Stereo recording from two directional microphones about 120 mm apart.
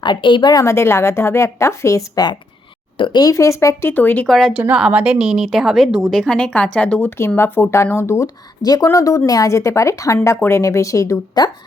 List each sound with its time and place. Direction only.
0.0 s a woman's voice: 40° left (ahead or behind)
0.6 s speech: 20° left (ahead or behind)
4.3 s a woman's voice: centre (ahead or behind)
4.8 s a woman's voice: 10° right (ahead or behind); by 11.5 s 30° left (ahead or behind)